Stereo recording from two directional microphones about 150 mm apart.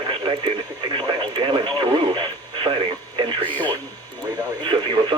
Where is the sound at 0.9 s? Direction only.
35° right (ahead or behind).